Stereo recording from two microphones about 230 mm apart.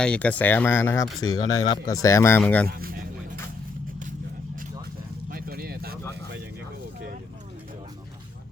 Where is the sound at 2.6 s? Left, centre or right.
Right.